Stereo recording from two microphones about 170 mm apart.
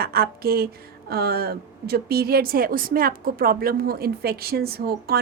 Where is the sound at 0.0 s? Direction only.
60° right (ahead or behind).